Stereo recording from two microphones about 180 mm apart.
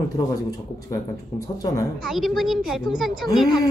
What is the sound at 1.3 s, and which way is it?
Speech, 35° left (ahead or behind).